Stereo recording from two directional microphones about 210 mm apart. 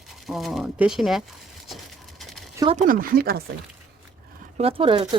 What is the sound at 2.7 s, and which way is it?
Speech, 40° right (ahead or behind).